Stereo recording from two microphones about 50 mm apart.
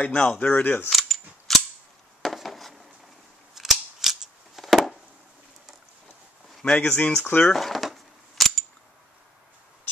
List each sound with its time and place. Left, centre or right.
0.0 s speech: left
0.8 s a sound: centre
3.5 s scissors: centre
6.6 s speech: left
7.2 s speech: left
7.5 s a sound: centre